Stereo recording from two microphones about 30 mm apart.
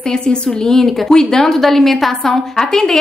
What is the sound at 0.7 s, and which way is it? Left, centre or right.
Speech, centre.